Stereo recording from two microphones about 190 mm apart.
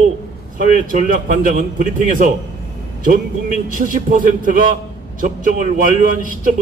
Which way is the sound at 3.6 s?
45° right (ahead or behind).